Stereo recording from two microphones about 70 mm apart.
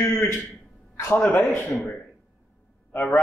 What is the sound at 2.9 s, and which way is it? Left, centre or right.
Speech, left.